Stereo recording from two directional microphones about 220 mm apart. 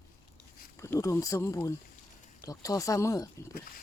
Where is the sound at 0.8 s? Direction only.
15° left (ahead or behind).